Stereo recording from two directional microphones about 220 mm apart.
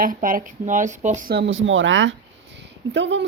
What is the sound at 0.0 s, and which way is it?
Speech, 40° right (ahead or behind).